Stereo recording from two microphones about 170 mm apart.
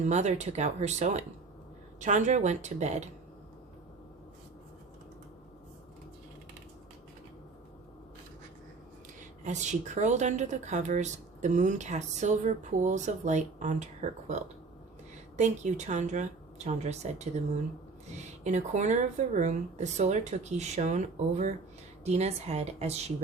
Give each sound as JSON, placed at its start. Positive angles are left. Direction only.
{"t": 0.0, "sound": "a woman's voice", "side_deg": -45}
{"t": 9.4, "sound": "a woman's voice", "side_deg": -45}
{"t": 15.4, "sound": "a woman's voice", "side_deg": -45}